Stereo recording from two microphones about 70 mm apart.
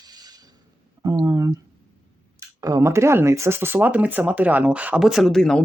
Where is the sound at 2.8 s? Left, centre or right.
Right; by 4.9 s centre.